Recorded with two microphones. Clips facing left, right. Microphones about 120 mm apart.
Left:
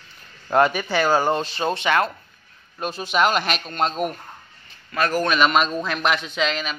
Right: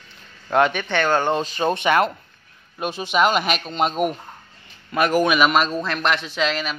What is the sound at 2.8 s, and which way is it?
A man's voice, centre (ahead or behind).